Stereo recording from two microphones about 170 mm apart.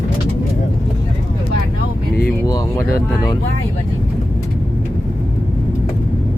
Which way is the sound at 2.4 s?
20° left (ahead or behind).